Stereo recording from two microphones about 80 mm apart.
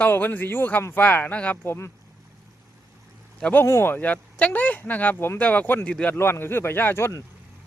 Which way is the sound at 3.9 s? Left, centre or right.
Centre.